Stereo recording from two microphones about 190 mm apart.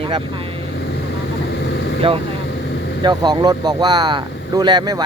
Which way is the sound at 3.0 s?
20° right (ahead or behind).